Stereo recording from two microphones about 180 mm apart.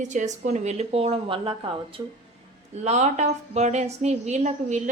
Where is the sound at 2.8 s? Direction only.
40° right (ahead or behind).